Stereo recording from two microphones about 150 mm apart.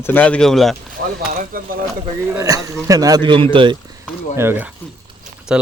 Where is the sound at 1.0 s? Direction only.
90° right.